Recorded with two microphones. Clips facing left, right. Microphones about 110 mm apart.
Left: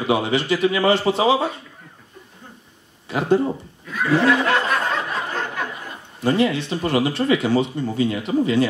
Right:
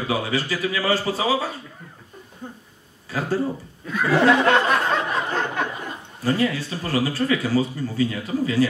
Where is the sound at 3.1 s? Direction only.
20° left (ahead or behind).